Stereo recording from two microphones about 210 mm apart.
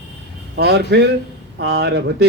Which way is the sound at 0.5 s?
50° right (ahead or behind).